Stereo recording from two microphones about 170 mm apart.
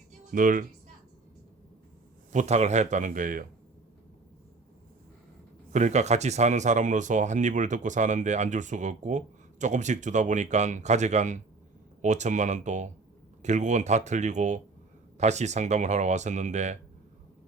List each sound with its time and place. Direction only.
0.3 s speech: 55° right (ahead or behind)
2.3 s speech: 45° right (ahead or behind)
5.7 s speech: 45° right (ahead or behind)